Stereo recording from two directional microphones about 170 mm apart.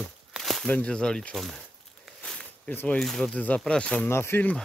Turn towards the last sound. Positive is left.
turn(degrees=10)  # may be behind; listen again after turning